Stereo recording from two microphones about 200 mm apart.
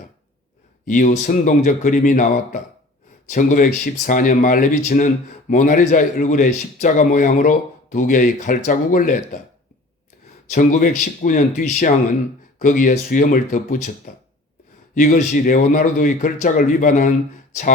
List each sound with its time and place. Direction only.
0.9 s speech: 40° left (ahead or behind)
10.5 s speech: 40° left (ahead or behind)